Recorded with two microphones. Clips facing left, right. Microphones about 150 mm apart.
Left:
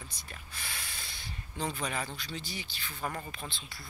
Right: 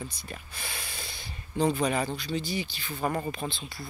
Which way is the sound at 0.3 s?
15° right (ahead or behind).